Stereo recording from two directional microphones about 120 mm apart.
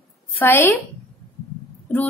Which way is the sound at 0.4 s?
20° left (ahead or behind).